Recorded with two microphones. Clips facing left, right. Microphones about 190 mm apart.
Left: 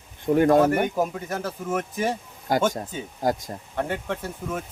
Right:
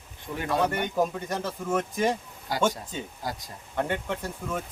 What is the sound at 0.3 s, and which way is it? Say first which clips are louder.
Speech: left 10 dB; 50° left (ahead or behind).